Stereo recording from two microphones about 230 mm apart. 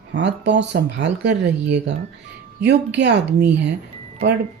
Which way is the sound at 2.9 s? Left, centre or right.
Right.